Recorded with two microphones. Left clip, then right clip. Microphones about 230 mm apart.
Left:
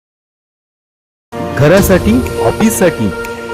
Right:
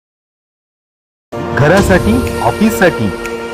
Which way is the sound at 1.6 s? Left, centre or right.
Left.